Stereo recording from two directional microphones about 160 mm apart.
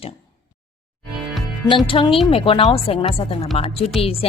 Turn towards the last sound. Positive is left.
turn(degrees=40)  # may be behind; listen again after turning